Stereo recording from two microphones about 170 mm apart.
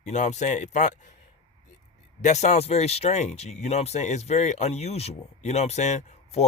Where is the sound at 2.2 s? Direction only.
40° left (ahead or behind).